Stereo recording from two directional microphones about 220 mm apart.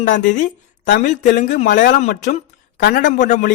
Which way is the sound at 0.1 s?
35° left (ahead or behind).